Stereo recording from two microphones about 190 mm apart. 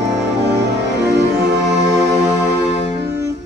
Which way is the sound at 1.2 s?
60° right (ahead or behind).